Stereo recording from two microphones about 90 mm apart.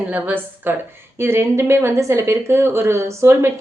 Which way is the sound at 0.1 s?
20° right (ahead or behind).